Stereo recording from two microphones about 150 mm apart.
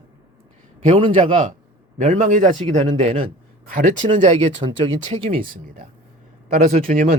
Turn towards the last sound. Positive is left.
turn(degrees=-60)  # may be behind; listen again after turning